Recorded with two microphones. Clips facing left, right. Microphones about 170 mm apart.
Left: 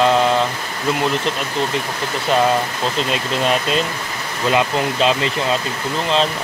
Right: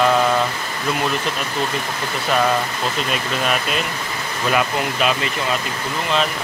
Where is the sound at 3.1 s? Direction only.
25° left (ahead or behind).